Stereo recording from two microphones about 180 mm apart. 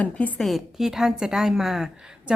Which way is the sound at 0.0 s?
10° left (ahead or behind).